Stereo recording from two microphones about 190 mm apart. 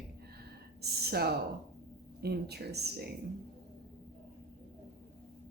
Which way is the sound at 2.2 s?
60° right (ahead or behind).